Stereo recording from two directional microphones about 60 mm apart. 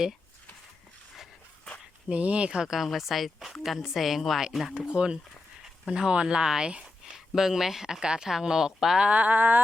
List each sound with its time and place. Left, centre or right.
2.0 s speech: centre
5.0 s speech: centre
9.0 s speech: right